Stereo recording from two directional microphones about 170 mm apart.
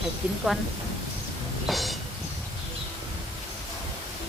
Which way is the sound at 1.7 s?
Centre (ahead or behind).